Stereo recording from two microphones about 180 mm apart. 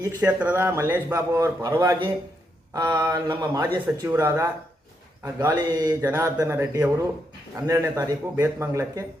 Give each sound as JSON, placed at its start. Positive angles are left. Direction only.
{"t": 0.2, "sound": "a man's voice", "side_deg": -10}